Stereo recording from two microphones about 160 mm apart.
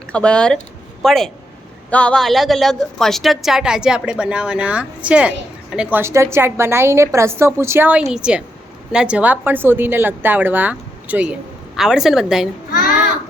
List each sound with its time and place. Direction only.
0.1 s a woman's voice: 5° left (ahead or behind)